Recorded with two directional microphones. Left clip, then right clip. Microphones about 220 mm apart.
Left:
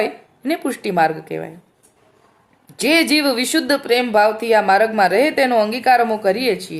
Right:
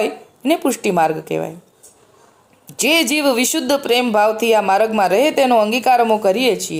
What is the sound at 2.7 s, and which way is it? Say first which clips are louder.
Speech: even; 20° right (ahead or behind).